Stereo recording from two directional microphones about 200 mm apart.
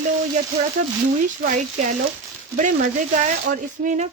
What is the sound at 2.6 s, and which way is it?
Speech, 40° right (ahead or behind).